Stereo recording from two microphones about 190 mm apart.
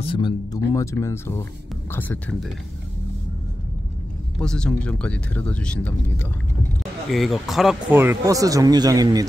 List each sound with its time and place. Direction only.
0.0 s speech: 25° left (ahead or behind); by 2.5 s 5° left (ahead or behind)
4.4 s speech: 5° left (ahead or behind)
8.0 s a man's voice: 15° right (ahead or behind)